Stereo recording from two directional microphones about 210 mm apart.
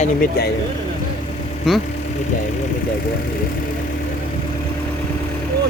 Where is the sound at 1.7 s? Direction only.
Centre (ahead or behind).